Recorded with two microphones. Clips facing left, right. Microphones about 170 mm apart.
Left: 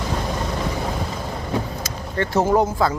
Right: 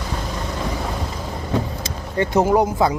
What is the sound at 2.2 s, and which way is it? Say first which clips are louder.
Speech: right 2 dB; 15° right (ahead or behind).